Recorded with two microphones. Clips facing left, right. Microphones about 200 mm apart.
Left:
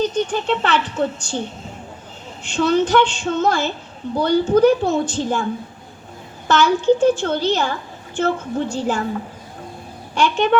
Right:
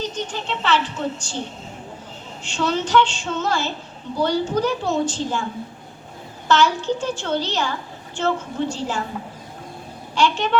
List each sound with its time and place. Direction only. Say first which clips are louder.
0.0 s speech: left 8 dB; 55° left (ahead or behind)
2.4 s speech: left 6 dB; 55° left (ahead or behind)
6.5 s a woman's voice: left 4 dB; 55° left (ahead or behind)
8.7 s a woman's voice: left 5 dB; 55° left (ahead or behind)
10.2 s speech: left 3 dB; 55° left (ahead or behind)